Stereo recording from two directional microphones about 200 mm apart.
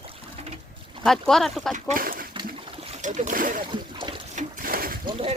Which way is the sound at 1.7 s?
45° right (ahead or behind).